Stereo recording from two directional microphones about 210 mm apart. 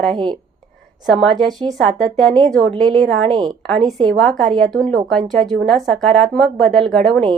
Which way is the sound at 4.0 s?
5° left (ahead or behind).